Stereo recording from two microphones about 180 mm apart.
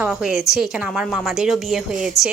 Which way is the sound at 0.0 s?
5° right (ahead or behind).